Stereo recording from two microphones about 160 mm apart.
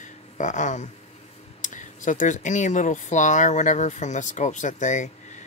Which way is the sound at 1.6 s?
55° left (ahead or behind).